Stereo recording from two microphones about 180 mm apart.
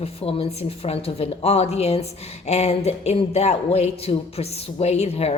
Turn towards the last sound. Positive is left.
turn(degrees=35)  # may be behind; listen again after turning